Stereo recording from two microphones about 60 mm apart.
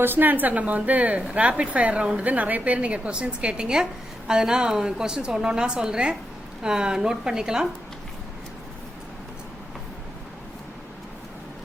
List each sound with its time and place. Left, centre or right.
0.0 s a woman's voice: right; by 7.7 s centre